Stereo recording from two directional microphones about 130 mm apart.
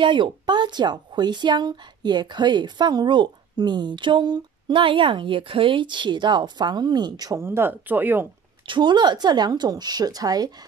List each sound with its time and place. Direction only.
0.0 s speech: 40° right (ahead or behind)
7.4 s speech: 15° right (ahead or behind)
8.6 s speech: 35° right (ahead or behind)